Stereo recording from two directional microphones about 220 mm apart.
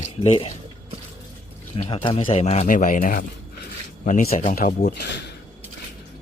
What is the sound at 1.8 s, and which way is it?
Speech, 25° left (ahead or behind).